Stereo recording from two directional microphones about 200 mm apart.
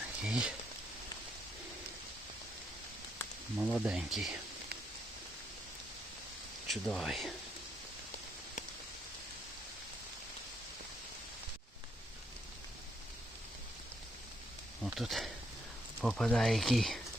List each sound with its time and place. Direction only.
0.2 s speech: 5° right (ahead or behind)
3.6 s speech: 5° right (ahead or behind)
6.7 s speech: centre (ahead or behind)
14.8 s speech: centre (ahead or behind)